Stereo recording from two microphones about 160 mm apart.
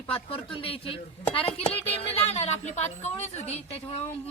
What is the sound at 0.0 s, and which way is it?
A woman's voice, 35° left (ahead or behind).